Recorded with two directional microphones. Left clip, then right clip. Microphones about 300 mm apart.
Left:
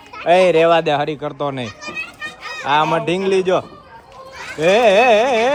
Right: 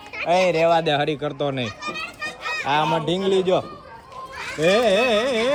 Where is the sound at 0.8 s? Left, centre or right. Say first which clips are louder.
Left 3 dB; centre.